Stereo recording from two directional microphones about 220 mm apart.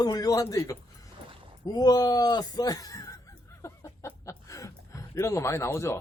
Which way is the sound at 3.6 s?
15° left (ahead or behind).